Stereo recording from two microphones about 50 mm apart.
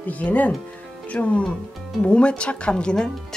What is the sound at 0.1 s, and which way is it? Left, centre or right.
Speech, left.